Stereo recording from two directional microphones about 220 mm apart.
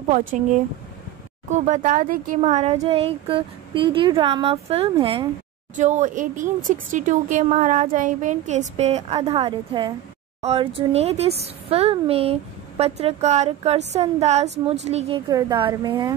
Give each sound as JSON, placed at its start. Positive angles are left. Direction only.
{"t": 1.5, "sound": "speech", "side_deg": -35}